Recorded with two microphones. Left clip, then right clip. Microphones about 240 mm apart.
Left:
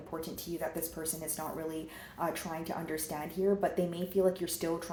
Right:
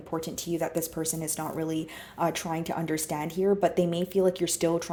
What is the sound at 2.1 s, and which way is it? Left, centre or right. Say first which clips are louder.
Speech: right 7 dB; right.